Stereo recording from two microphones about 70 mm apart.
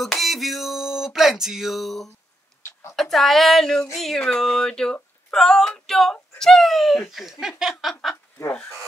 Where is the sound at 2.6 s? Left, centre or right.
Left.